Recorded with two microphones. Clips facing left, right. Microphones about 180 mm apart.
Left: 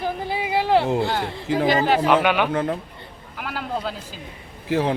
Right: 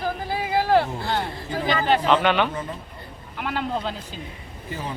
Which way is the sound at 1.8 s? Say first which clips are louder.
Left 2 dB; 10° left (ahead or behind).